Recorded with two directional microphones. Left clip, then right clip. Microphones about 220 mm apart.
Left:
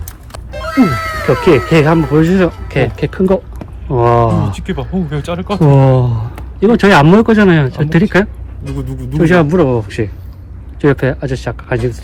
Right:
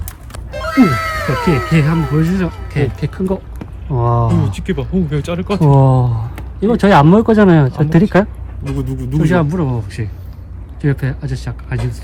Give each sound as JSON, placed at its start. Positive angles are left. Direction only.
{"t": 0.5, "sound": "speech", "side_deg": 0}
{"t": 4.5, "sound": "speech", "side_deg": 10}
{"t": 5.5, "sound": "speech", "side_deg": -20}
{"t": 8.7, "sound": "speech", "side_deg": 0}